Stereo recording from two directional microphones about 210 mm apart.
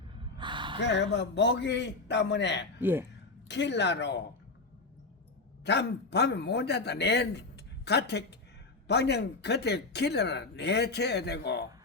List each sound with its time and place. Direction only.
0.3 s gasp: 20° right (ahead or behind)
0.8 s a man's voice: 55° left (ahead or behind)
2.8 s speech: 10° right (ahead or behind)
3.5 s a man's voice: 55° left (ahead or behind)
5.6 s speech: 55° left (ahead or behind)